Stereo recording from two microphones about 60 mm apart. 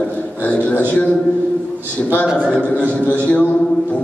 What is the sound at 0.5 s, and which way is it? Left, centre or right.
Speech, left.